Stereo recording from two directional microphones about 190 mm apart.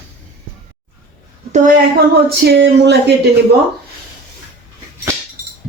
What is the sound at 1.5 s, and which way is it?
Speech, 45° right (ahead or behind).